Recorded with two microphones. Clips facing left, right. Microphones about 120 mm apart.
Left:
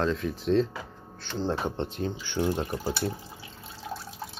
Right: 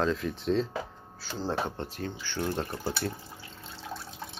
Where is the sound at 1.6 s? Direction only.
20° left (ahead or behind).